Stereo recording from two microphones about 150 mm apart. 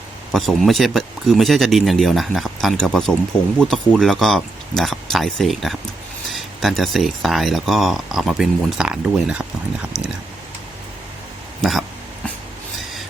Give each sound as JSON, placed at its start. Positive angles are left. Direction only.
{"t": 0.3, "sound": "speech", "side_deg": 0}
{"t": 11.6, "sound": "speech", "side_deg": 0}